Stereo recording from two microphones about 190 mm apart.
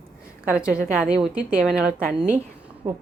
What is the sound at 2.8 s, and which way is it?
Speech, 20° right (ahead or behind).